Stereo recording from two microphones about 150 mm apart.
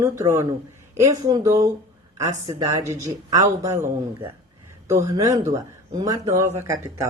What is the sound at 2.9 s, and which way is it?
Speech, 20° right (ahead or behind).